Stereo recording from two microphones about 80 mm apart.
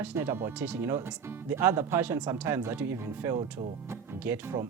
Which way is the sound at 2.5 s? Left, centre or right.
Right.